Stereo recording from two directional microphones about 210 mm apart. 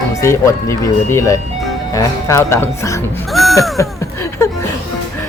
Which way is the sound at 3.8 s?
15° left (ahead or behind).